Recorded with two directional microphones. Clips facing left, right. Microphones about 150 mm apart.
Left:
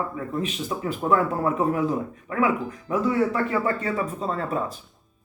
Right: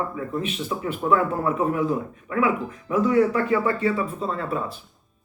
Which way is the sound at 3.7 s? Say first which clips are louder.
Right 2 dB; 40° left (ahead or behind).